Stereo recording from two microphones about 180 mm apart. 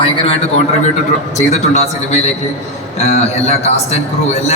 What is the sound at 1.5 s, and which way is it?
Speech, 35° left (ahead or behind).